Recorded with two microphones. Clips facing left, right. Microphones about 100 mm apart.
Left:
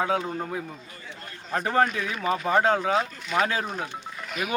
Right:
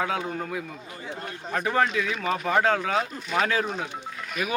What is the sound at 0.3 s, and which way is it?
Speech, 25° left (ahead or behind).